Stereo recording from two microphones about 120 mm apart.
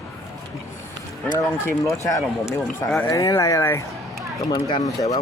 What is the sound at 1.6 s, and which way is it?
Speech, 25° left (ahead or behind).